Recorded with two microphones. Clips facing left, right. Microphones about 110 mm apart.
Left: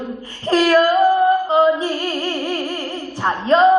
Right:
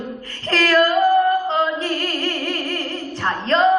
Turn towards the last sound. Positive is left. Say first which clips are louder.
# left 4 dB
turn(degrees=15)  # may be behind; listen again after turning